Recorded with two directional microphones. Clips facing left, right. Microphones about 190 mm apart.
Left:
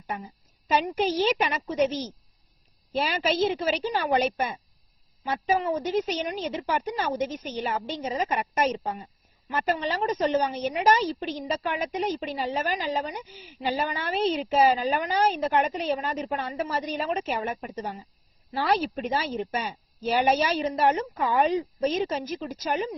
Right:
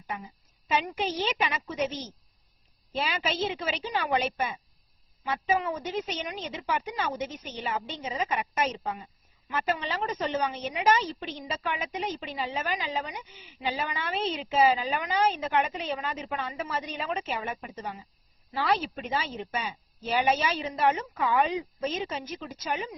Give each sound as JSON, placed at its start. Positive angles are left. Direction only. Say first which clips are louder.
{"t": 0.7, "sound": "a woman's voice", "louder": "left 5 dB", "side_deg": 40}